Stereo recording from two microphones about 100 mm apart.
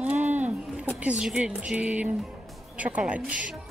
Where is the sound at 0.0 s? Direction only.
15° right (ahead or behind).